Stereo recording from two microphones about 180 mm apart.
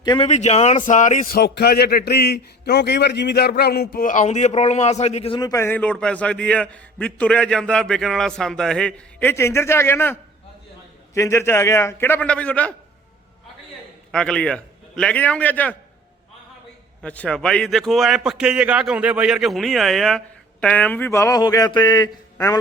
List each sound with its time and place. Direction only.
0.0 s speech: 25° left (ahead or behind)
0.3 s a man's voice: 40° left (ahead or behind)
5.4 s a man's voice: 15° left (ahead or behind)
14.1 s a man's voice: 5° left (ahead or behind)
17.0 s a man's voice: 5° left (ahead or behind)